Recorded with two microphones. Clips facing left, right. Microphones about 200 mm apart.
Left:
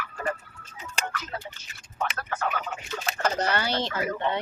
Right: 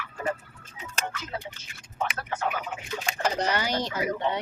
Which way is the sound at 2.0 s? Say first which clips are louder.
Even; 20° right (ahead or behind).